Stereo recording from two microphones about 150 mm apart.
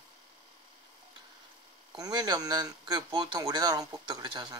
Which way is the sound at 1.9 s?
25° right (ahead or behind).